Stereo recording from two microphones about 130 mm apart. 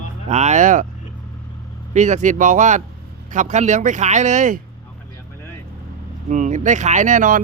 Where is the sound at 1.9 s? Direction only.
65° right (ahead or behind).